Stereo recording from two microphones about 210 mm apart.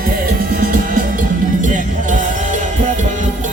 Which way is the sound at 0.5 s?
40° right (ahead or behind).